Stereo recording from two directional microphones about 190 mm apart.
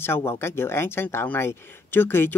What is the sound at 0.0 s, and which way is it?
Speech, 10° left (ahead or behind).